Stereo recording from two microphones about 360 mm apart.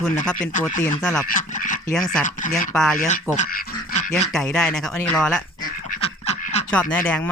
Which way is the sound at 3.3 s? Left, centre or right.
Centre.